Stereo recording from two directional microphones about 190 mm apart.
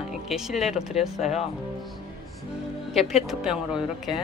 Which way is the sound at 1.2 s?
35° left (ahead or behind).